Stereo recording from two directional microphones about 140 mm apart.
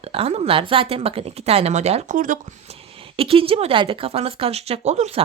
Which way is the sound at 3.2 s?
40° right (ahead or behind).